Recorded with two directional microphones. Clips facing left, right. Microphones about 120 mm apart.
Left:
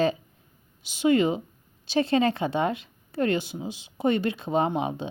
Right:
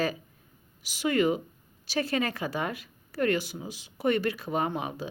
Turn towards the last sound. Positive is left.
turn(degrees=25)  # may be behind; listen again after turning